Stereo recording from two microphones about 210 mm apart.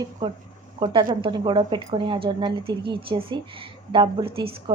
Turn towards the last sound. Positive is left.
turn(degrees=-25)  # may be behind; listen again after turning